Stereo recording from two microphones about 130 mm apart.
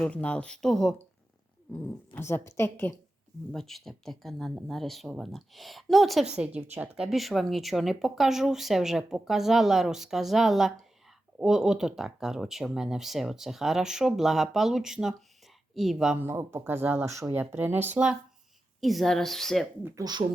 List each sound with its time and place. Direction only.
0.0 s speech: 10° left (ahead or behind)
1.7 s speech: 20° left (ahead or behind)
3.5 s speech: centre (ahead or behind)
16.2 s speech: 20° right (ahead or behind); by 19.6 s 5° left (ahead or behind)
20.0 s speech: 25° right (ahead or behind)